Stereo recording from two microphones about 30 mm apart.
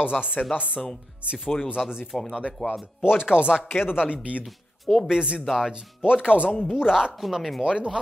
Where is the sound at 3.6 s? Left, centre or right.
Left.